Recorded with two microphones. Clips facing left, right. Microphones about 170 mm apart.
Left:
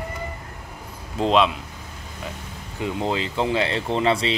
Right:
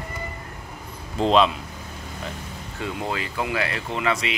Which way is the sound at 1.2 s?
Centre (ahead or behind).